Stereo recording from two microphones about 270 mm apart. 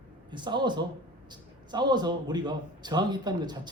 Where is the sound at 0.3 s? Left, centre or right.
Centre.